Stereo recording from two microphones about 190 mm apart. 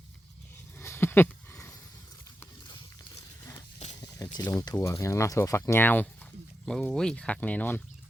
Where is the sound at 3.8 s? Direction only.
35° left (ahead or behind).